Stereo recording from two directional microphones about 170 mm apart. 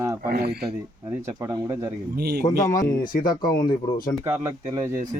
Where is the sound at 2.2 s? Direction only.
70° right (ahead or behind).